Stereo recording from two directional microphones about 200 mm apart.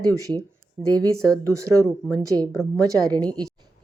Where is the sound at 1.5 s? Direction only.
15° right (ahead or behind).